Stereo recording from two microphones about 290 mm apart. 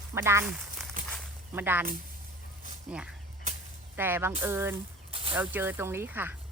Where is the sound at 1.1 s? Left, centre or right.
Centre.